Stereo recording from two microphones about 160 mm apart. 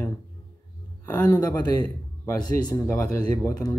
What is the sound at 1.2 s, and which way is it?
Speech, 25° left (ahead or behind).